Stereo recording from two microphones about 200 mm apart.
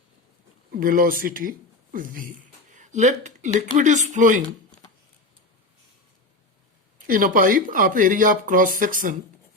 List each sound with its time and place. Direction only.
0.7 s speech: 45° right (ahead or behind)
7.1 s speech: 45° right (ahead or behind)